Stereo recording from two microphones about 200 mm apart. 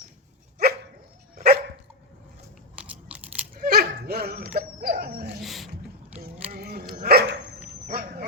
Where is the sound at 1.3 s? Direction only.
50° right (ahead or behind).